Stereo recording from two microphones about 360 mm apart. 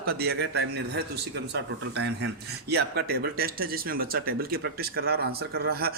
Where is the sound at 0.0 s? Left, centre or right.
Right.